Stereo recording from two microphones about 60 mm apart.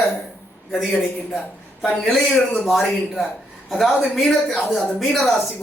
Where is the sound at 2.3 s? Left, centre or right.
Left.